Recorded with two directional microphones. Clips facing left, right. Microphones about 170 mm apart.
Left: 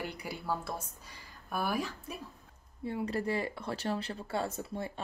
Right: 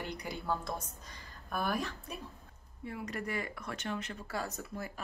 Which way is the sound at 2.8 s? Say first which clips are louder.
Left 6 dB; 30° left (ahead or behind).